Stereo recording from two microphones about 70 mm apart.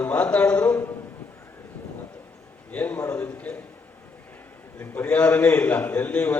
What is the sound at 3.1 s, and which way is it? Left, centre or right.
Speech, left.